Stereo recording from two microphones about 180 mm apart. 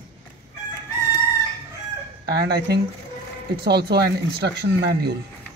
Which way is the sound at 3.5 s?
60° right (ahead or behind).